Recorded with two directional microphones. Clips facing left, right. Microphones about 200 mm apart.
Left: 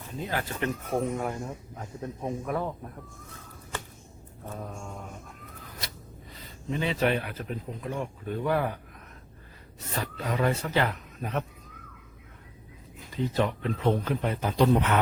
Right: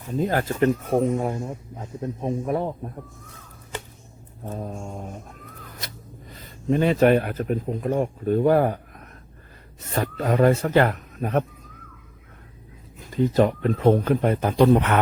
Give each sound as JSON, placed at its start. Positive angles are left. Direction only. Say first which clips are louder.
{"t": 0.2, "sound": "speech", "louder": "right 10 dB", "side_deg": -45}
{"t": 1.1, "sound": "speech", "louder": "right 6 dB", "side_deg": -20}
{"t": 4.4, "sound": "speech", "louder": "right 6 dB", "side_deg": -25}
{"t": 6.7, "sound": "speech", "louder": "right 9 dB", "side_deg": -50}
{"t": 13.1, "sound": "speech", "louder": "right 8 dB", "side_deg": -45}